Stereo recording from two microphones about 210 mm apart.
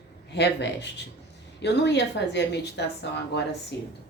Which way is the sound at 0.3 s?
55° left (ahead or behind).